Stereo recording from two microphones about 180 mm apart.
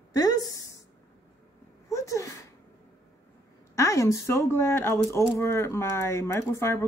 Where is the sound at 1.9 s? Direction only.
15° left (ahead or behind).